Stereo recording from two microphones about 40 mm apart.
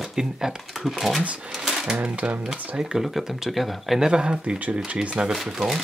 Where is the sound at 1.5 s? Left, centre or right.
Centre.